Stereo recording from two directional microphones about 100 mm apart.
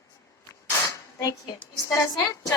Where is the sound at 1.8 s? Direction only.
25° left (ahead or behind).